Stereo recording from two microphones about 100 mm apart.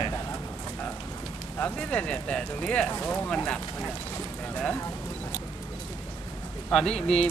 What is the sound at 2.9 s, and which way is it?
Speech, 20° left (ahead or behind).